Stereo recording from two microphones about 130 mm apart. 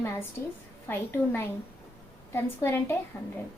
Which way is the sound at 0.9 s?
15° left (ahead or behind).